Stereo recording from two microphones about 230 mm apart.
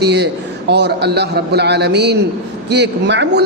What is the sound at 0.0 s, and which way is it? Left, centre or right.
A man's voice, right.